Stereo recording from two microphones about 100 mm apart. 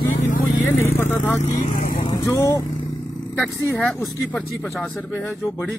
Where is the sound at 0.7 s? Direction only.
20° left (ahead or behind).